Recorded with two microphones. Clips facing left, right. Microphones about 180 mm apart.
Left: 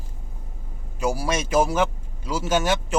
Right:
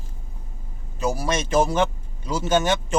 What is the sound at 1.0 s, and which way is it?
Speech, 10° left (ahead or behind).